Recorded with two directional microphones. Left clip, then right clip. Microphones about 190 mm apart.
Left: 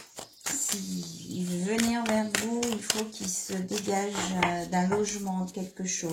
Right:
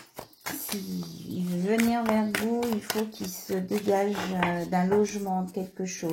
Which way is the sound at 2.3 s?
20° right (ahead or behind).